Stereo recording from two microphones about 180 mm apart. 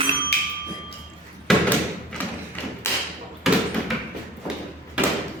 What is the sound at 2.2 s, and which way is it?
Thump, 10° left (ahead or behind).